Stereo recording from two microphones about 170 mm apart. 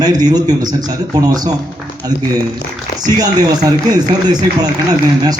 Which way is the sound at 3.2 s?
20° right (ahead or behind).